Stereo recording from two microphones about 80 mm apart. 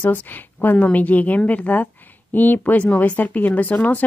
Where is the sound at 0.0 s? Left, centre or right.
Left.